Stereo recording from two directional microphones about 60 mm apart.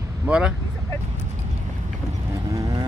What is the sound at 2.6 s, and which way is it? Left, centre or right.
Vehicle, right.